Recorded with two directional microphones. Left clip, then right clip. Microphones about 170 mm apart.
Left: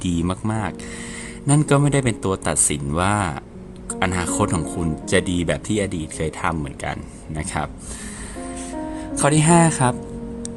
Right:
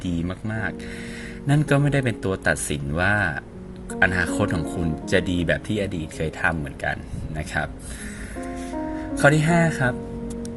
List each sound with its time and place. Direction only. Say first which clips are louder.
0.0 s speech: left 5 dB; 30° left (ahead or behind)
1.5 s speech: left 3 dB; 20° left (ahead or behind)
9.0 s speech: right 1 dB; 25° left (ahead or behind)